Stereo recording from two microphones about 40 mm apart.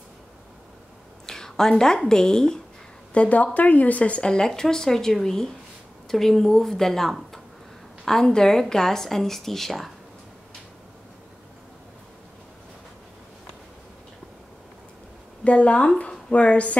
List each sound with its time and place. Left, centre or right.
1.2 s a sound: centre
2.0 s a woman's voice: centre
3.1 s speech: left
4.3 s a woman's voice: centre
7.1 s a sound: centre
8.0 s a woman's voice: centre
15.4 s a woman's voice: left